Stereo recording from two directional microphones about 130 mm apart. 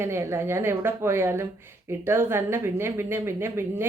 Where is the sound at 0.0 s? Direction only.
20° right (ahead or behind).